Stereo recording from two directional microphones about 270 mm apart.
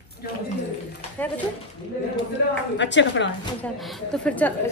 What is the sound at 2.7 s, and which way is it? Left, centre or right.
Speech, left.